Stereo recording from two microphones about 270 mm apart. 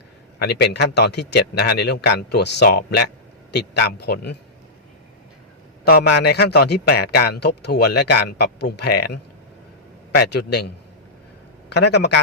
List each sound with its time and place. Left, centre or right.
0.3 s a man's voice: left
5.8 s a man's voice: left
10.2 s a man's voice: left
11.7 s a man's voice: left